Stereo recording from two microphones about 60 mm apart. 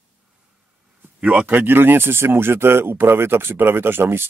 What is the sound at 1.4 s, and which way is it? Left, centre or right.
Speech, right.